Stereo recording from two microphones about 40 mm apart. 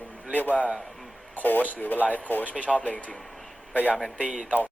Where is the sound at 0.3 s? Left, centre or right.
Left.